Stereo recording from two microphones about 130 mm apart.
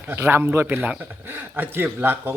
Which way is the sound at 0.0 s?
15° right (ahead or behind).